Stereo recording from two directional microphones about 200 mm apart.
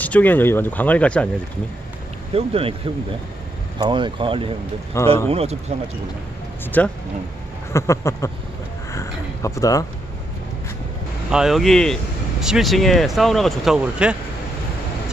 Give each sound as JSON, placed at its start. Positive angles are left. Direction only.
{"t": 0.0, "sound": "speech", "side_deg": 10}
{"t": 2.3, "sound": "speech", "side_deg": -30}
{"t": 4.9, "sound": "speech", "side_deg": 15}
{"t": 5.3, "sound": "speech", "side_deg": -30}
{"t": 6.6, "sound": "speech", "side_deg": 10}
{"t": 8.9, "sound": "a sound", "side_deg": 15}
{"t": 11.2, "sound": "speech", "side_deg": 0}